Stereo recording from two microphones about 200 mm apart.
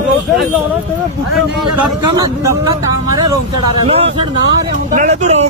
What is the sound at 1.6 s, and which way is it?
Speech, 20° right (ahead or behind).